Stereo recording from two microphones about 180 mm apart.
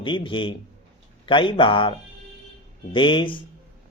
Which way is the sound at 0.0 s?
25° left (ahead or behind).